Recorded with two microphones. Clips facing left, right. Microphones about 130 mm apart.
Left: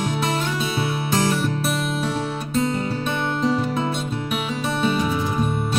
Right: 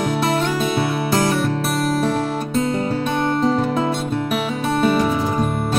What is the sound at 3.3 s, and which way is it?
Music, 45° right (ahead or behind).